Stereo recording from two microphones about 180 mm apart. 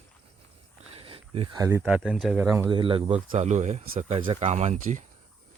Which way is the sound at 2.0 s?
Centre (ahead or behind).